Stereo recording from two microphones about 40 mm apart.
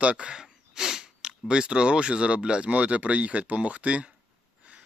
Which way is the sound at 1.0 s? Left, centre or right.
Right.